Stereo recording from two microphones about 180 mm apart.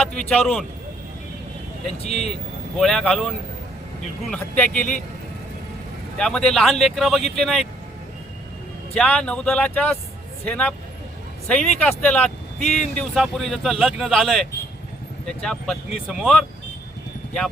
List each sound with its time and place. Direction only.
0.0 s speech: 5° left (ahead or behind)
1.9 s speech: 35° left (ahead or behind)
2.7 s speech: centre (ahead or behind)
4.4 s speech: 10° left (ahead or behind)
6.1 s speech: 5° left (ahead or behind)
9.0 s speech: 5° left (ahead or behind)